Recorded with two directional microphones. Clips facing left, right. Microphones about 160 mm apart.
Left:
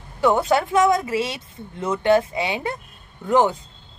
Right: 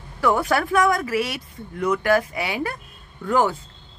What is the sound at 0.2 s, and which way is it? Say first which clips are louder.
Speech: left 2 dB; 25° left (ahead or behind).